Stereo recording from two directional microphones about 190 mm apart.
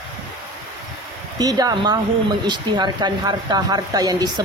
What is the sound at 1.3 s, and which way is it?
Speech, 20° right (ahead or behind).